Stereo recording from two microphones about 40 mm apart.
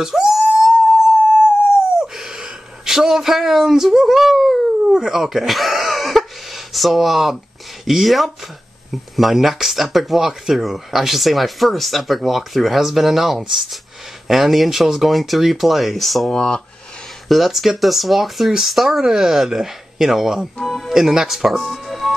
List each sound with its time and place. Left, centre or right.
0.0 s dog: centre
2.0 s a sound: centre
4.9 s speech: centre
16.3 s speech: centre
17.3 s speech: centre
20.6 s music: centre
20.9 s speech: centre
21.5 s music: centre